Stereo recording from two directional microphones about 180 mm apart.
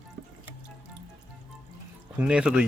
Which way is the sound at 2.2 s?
5° right (ahead or behind).